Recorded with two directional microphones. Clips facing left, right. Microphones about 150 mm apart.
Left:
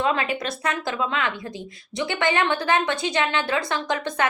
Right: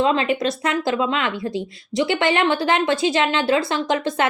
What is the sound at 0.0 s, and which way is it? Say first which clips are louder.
A woman's voice: right 5 dB; 25° right (ahead or behind).